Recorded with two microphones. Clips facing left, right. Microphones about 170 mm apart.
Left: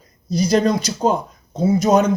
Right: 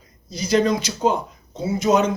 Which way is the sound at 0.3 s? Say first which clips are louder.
Left 2 dB; 40° left (ahead or behind).